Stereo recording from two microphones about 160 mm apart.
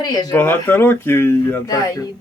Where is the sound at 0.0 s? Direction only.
25° left (ahead or behind).